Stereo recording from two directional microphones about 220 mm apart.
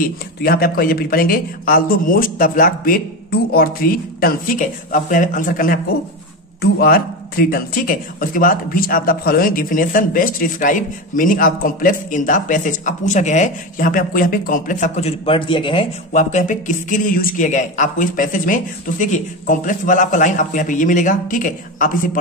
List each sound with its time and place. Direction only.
0.4 s a man's voice: 45° left (ahead or behind)
6.8 s a man's voice: 45° left (ahead or behind)